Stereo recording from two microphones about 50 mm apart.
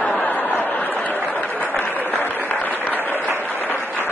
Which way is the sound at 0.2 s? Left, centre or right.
Left.